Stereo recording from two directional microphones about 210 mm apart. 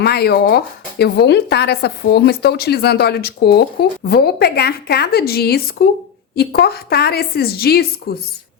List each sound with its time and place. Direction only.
0.0 s speech: 50° left (ahead or behind)